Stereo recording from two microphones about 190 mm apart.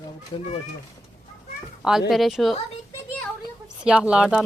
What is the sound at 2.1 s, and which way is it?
Speech, centre (ahead or behind).